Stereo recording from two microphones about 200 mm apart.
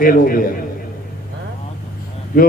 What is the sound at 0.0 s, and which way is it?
Speech, 45° left (ahead or behind).